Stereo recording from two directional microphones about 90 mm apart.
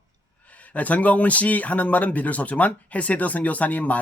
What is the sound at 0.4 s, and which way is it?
Speech, 15° left (ahead or behind).